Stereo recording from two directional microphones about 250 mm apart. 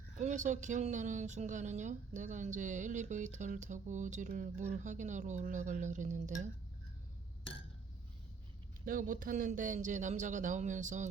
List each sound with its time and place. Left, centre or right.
0.2 s a woman's voice: right
8.8 s speech: right